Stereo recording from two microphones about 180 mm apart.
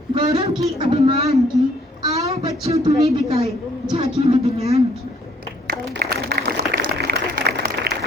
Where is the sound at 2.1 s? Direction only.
35° right (ahead or behind).